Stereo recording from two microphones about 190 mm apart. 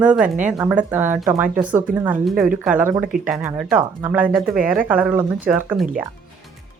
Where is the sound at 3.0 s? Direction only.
45° right (ahead or behind).